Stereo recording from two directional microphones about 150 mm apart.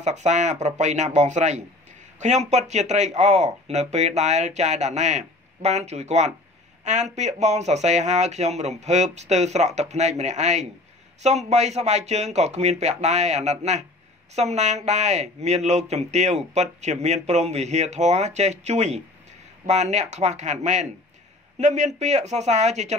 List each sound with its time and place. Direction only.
0.0 s speech: 50° right (ahead or behind)